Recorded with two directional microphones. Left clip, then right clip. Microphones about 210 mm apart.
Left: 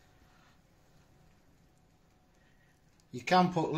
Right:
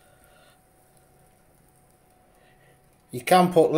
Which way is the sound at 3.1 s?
45° right (ahead or behind).